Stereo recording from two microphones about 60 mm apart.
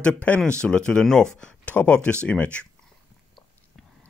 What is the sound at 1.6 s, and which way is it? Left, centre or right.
Speech, left.